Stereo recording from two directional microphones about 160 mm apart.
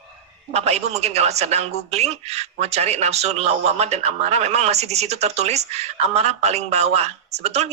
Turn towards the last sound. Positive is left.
turn(degrees=-45)  # may be behind; listen again after turning